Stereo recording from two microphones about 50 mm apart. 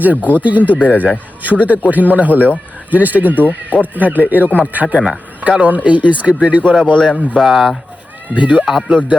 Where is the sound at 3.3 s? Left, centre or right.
Left.